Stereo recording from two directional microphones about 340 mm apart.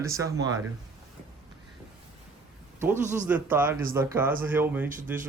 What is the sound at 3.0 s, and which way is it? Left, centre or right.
Speech, right.